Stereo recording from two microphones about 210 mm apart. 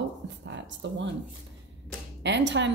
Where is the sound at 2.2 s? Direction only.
55° right (ahead or behind).